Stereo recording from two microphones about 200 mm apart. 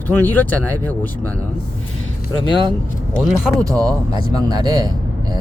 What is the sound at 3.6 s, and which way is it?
Speech, 15° right (ahead or behind).